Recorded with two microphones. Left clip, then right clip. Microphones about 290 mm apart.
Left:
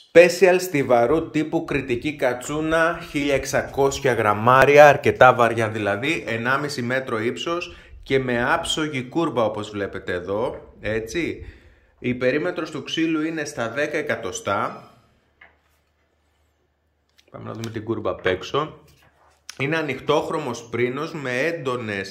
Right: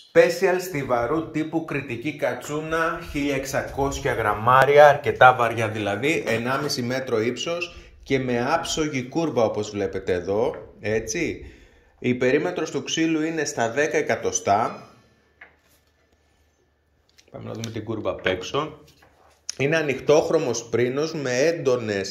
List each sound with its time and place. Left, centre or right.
0.2 s speech: left; by 14.7 s centre
17.2 s a sound: centre
17.6 s speech: centre
19.4 s speech: centre